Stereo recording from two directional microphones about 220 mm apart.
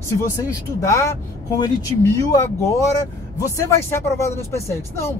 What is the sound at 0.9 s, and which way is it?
Speech, 15° left (ahead or behind).